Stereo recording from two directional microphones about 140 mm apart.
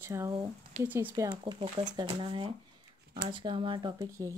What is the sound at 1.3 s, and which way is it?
A woman's voice, 35° right (ahead or behind).